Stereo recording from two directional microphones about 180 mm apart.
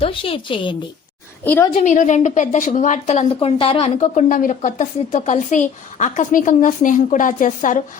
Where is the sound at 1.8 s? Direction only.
45° left (ahead or behind).